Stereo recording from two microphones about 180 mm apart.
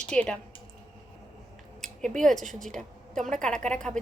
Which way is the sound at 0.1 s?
5° left (ahead or behind).